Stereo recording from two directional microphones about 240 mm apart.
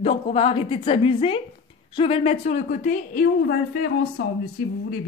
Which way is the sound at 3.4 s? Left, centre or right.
Left.